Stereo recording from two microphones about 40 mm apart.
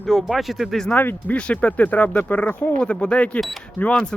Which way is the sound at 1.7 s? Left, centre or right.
Left.